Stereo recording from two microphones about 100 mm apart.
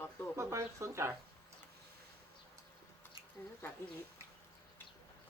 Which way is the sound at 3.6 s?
25° left (ahead or behind).